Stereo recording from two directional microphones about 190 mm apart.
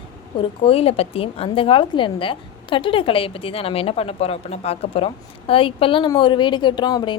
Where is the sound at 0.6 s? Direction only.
30° left (ahead or behind).